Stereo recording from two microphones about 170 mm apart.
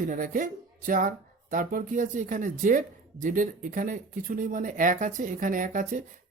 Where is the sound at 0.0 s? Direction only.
55° right (ahead or behind).